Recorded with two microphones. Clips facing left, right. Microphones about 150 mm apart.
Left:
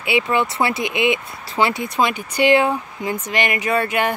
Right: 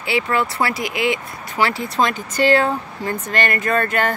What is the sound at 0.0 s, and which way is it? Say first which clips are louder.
Speech: left 1 dB; 20° left (ahead or behind).